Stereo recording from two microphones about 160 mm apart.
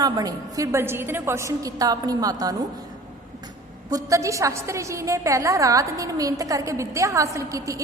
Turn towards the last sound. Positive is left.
turn(degrees=-20)  # may be behind; listen again after turning